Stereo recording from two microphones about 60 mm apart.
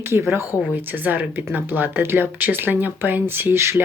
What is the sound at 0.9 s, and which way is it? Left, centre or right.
Speech, right.